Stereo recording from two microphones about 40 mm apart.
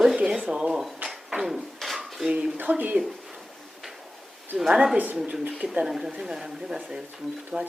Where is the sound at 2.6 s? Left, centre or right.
Right.